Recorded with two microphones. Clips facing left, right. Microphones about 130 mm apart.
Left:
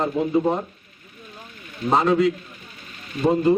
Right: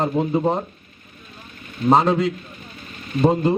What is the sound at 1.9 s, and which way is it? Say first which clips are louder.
Speech: right 2 dB; 30° right (ahead or behind).